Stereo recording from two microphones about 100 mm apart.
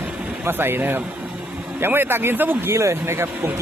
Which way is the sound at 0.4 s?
20° right (ahead or behind).